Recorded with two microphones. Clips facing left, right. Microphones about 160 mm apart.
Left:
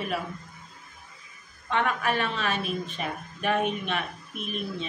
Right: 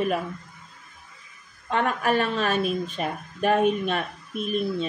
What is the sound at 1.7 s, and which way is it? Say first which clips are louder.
A woman's voice: right 3 dB; 45° right (ahead or behind).